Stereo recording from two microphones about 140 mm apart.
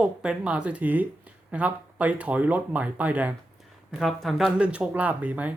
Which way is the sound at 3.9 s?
Centre (ahead or behind).